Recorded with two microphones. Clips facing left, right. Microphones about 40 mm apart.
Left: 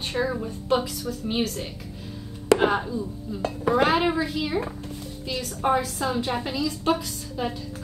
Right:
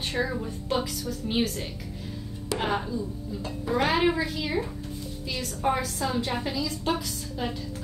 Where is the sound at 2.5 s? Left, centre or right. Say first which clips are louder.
Left 5 dB; left.